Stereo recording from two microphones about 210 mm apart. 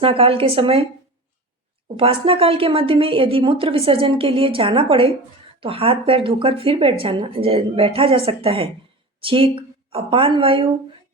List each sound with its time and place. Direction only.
0.0 s speech: 25° right (ahead or behind)
2.0 s speech: 25° right (ahead or behind)